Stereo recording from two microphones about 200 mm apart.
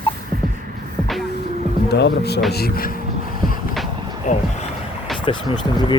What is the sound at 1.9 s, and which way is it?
Speech, 55° left (ahead or behind).